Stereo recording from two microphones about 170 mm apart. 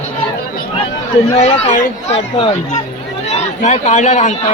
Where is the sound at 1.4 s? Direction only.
40° left (ahead or behind).